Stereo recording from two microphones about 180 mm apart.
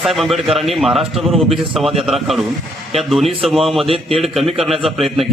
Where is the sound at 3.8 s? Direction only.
30° right (ahead or behind).